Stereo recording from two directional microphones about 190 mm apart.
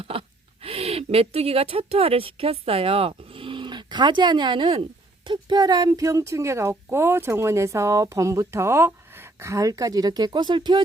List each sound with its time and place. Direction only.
0.0 s speech: 30° right (ahead or behind)